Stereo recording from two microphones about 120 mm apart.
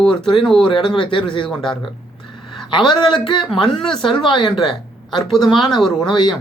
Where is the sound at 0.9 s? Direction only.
45° left (ahead or behind).